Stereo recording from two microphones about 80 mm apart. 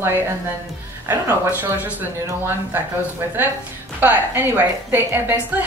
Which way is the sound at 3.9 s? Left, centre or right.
Right.